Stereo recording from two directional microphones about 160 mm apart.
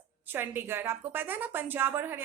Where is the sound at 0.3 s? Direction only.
15° right (ahead or behind).